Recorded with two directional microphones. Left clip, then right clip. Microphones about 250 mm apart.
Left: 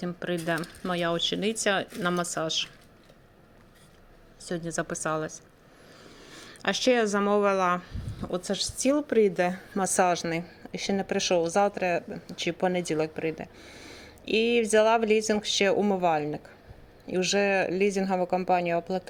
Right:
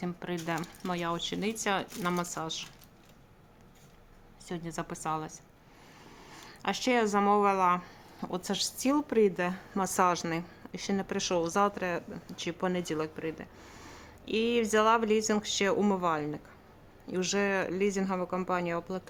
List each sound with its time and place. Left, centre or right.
0.0 s speech: centre
4.4 s speech: centre